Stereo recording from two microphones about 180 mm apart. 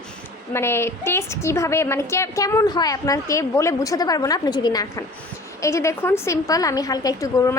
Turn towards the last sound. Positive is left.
turn(degrees=15)  # may be behind; listen again after turning